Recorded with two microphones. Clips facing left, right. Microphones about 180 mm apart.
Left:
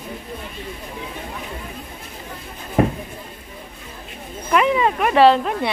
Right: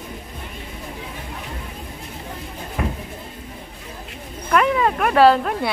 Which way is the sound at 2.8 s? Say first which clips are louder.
Left 8 dB; 40° left (ahead or behind).